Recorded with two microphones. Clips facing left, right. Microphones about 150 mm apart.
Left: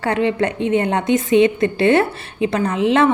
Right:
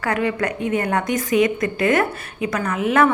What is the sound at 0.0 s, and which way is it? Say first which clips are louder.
A woman's voice: left 3 dB; 25° left (ahead or behind).